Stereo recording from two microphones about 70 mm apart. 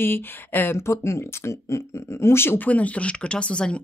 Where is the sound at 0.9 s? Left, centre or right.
Left.